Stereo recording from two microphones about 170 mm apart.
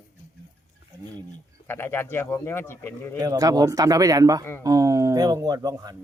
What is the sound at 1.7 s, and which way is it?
Speech, 15° left (ahead or behind).